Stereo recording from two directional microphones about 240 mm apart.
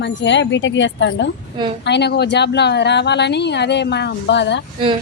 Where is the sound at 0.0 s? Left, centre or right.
Left.